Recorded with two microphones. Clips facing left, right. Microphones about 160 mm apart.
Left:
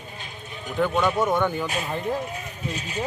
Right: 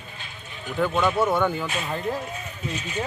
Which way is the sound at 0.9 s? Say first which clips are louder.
Right 1 dB; 10° left (ahead or behind).